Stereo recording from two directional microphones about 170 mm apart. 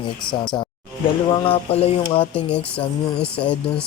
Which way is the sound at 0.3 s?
25° left (ahead or behind).